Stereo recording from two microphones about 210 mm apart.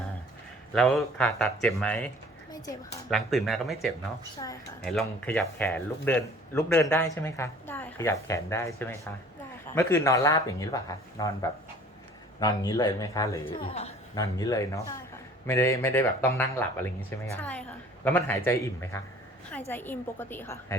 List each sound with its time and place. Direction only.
0.7 s speech: centre (ahead or behind)
3.1 s speech: centre (ahead or behind); by 11.3 s 15° left (ahead or behind)
12.4 s speech: 15° left (ahead or behind)